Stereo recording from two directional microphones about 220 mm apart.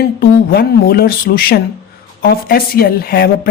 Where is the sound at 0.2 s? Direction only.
45° left (ahead or behind).